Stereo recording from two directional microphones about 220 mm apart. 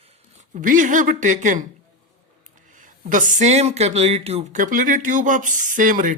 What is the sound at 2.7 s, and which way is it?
Speech, 35° right (ahead or behind).